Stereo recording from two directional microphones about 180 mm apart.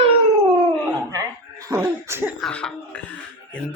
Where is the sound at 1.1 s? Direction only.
20° right (ahead or behind).